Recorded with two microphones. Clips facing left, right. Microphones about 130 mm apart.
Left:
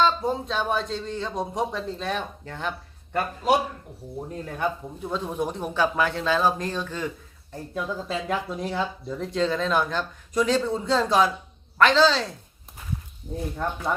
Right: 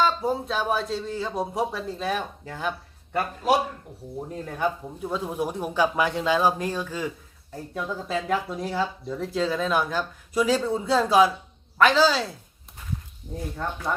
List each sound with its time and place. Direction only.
0.0 s speech: 5° right (ahead or behind)
4.3 s speech: 5° right (ahead or behind)